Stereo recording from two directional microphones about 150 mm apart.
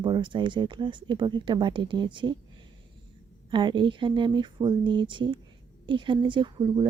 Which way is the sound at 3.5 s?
30° right (ahead or behind).